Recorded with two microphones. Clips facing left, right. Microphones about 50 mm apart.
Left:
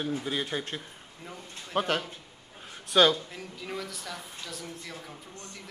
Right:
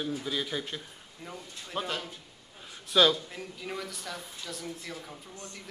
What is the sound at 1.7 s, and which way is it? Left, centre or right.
Speech, left.